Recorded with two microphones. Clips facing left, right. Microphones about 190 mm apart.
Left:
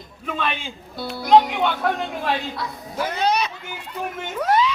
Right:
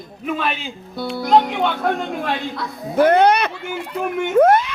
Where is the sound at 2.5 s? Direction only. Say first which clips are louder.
Right 9 dB; 60° right (ahead or behind).